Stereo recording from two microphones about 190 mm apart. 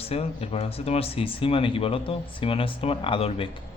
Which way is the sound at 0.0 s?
30° left (ahead or behind).